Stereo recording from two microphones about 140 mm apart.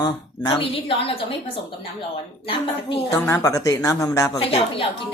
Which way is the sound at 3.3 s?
25° left (ahead or behind).